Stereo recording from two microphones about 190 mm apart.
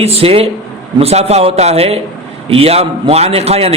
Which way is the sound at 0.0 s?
30° right (ahead or behind).